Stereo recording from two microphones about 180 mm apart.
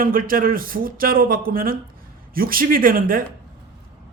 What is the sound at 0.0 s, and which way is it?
Speech, 50° right (ahead or behind).